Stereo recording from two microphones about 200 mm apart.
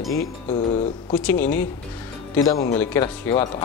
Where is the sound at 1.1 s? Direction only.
10° left (ahead or behind).